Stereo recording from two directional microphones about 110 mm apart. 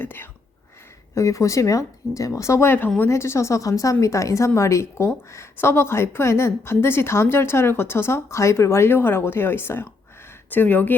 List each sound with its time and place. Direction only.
0.0 s a woman's voice: 20° left (ahead or behind)
1.1 s a woman's voice: 30° left (ahead or behind)